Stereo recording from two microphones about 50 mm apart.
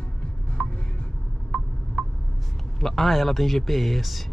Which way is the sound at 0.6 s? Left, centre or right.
Left.